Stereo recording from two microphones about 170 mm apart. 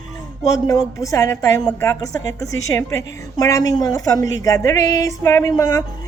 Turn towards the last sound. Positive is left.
turn(degrees=20)  # may be behind; listen again after turning